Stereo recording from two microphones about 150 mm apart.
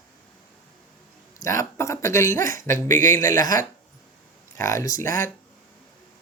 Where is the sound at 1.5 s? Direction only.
20° left (ahead or behind).